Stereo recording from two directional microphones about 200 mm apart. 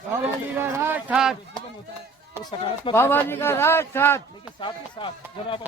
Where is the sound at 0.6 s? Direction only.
10° right (ahead or behind).